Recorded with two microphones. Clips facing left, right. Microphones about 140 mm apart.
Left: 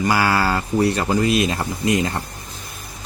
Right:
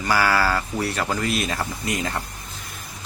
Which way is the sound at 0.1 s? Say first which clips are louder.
Right 1 dB; 20° left (ahead or behind).